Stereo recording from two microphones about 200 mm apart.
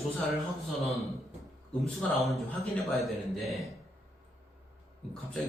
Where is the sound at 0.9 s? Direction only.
Centre (ahead or behind).